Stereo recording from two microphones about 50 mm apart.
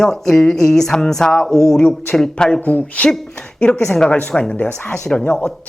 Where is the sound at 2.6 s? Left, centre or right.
Left.